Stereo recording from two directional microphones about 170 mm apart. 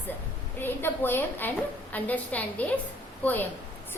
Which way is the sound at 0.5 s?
10° left (ahead or behind).